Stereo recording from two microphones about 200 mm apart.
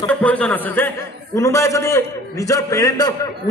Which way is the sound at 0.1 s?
5° left (ahead or behind).